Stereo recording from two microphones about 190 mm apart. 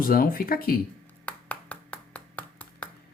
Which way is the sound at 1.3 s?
5° left (ahead or behind).